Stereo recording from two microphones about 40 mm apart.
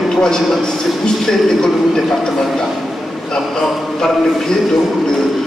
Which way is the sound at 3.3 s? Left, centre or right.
Centre.